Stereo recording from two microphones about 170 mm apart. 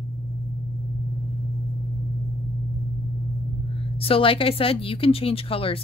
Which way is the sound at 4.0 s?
30° left (ahead or behind).